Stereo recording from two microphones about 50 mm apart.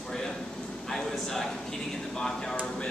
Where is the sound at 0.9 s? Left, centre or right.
Centre.